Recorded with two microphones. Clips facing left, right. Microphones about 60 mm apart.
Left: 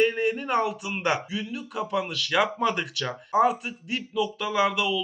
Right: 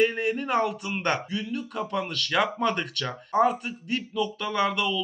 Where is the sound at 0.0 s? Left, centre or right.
Centre.